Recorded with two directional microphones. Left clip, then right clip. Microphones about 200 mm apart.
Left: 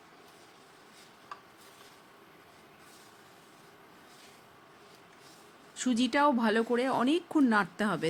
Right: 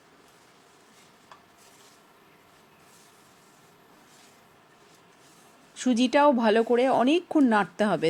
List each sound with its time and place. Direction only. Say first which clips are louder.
5.7 s speech: right 6 dB; 5° right (ahead or behind)